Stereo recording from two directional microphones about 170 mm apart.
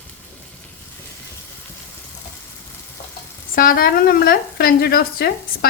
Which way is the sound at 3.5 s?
55° left (ahead or behind).